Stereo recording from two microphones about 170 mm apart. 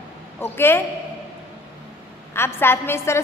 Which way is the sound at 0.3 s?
15° left (ahead or behind).